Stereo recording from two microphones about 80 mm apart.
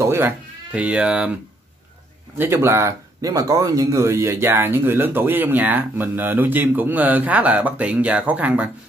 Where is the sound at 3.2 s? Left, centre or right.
Right.